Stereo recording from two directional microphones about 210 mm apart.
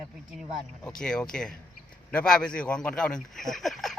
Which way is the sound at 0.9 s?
5° left (ahead or behind).